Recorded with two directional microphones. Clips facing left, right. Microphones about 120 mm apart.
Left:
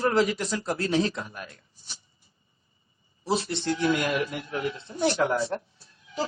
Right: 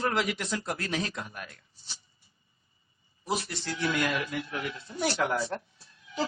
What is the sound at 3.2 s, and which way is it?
Speech, 30° left (ahead or behind).